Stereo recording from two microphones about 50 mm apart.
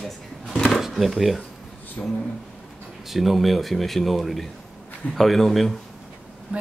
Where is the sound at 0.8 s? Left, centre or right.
Centre.